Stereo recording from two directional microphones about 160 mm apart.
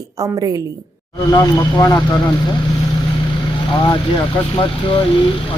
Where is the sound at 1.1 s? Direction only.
25° left (ahead or behind).